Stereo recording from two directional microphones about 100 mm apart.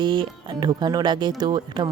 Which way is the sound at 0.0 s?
45° right (ahead or behind).